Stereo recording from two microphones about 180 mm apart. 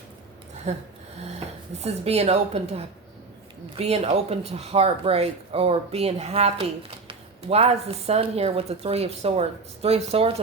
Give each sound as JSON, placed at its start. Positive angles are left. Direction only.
{"t": 0.7, "sound": "speech", "side_deg": -35}